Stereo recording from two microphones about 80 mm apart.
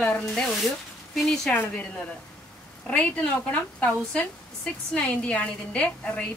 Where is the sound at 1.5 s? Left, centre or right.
Left.